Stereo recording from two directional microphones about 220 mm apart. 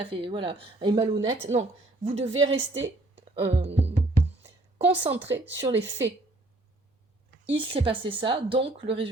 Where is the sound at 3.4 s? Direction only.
25° right (ahead or behind).